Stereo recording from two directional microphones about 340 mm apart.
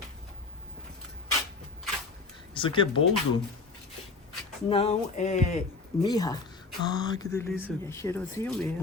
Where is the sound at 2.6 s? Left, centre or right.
Centre.